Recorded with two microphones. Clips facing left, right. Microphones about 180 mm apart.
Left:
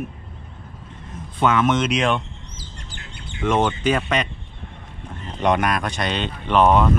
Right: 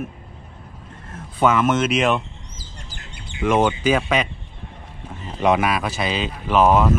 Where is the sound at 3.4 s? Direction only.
5° right (ahead or behind).